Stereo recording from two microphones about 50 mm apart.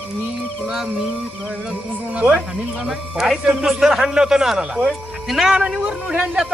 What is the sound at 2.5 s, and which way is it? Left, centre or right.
Speech, centre.